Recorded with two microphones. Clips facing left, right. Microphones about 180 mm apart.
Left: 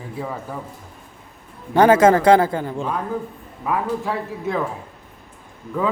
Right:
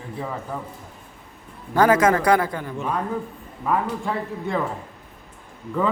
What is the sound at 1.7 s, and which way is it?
Speech, 25° left (ahead or behind).